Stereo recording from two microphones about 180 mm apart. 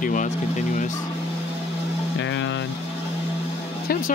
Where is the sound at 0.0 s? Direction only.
45° left (ahead or behind).